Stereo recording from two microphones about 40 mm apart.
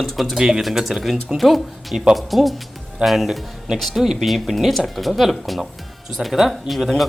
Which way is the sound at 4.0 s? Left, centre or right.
Centre.